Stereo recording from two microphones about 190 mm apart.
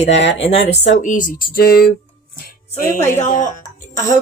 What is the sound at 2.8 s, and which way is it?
Speech, 15° left (ahead or behind).